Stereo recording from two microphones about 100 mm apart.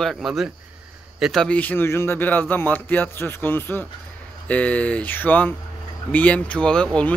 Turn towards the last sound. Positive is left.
turn(degrees=10)  # may be behind; listen again after turning